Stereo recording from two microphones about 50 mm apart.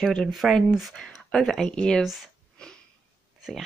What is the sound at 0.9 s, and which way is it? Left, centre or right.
Speech, centre.